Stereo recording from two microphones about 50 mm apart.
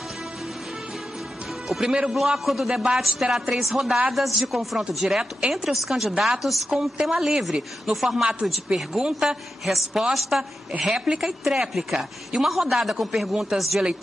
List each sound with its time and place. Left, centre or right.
1.7 s speech: centre
6.7 s a woman's voice: centre